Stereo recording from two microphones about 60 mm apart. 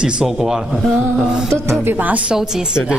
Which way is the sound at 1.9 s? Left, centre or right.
Right.